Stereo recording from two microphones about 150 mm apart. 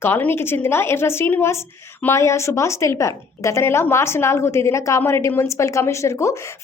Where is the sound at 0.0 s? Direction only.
15° left (ahead or behind).